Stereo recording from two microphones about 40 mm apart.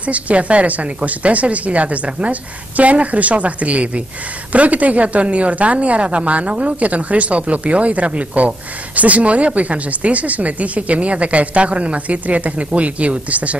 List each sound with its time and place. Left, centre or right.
0.0 s speech: right